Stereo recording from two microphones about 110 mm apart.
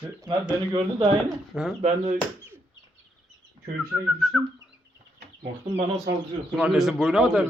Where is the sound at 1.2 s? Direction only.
5° right (ahead or behind).